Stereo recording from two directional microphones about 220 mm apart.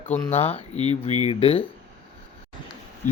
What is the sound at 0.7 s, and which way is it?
Speech, 20° right (ahead or behind).